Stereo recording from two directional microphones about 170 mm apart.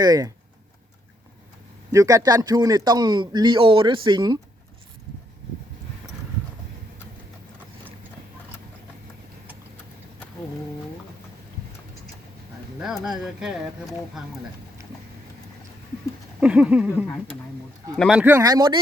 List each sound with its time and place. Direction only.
0.0 s a man's voice: 20° right (ahead or behind)
1.9 s a man's voice: 20° right (ahead or behind)
12.8 s speech: 5° right (ahead or behind)
16.4 s speech: 5° right (ahead or behind)
18.2 s speech: 10° right (ahead or behind)
18.4 s a man's voice: 20° right (ahead or behind)